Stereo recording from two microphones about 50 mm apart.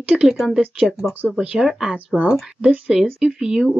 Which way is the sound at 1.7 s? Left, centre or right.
Centre.